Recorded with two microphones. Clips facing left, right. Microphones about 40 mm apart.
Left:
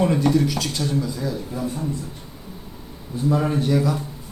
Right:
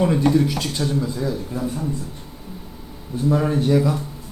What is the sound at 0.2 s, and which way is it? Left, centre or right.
Speech, right.